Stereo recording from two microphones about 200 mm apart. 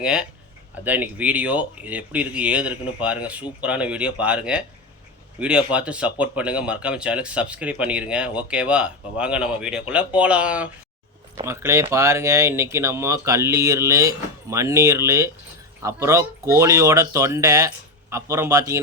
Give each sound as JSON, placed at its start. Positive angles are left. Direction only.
{"t": 0.0, "sound": "speech", "side_deg": -5}